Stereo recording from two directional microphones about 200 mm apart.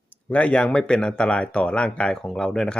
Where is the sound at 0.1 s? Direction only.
5° left (ahead or behind).